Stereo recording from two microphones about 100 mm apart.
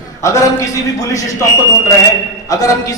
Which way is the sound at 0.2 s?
35° left (ahead or behind).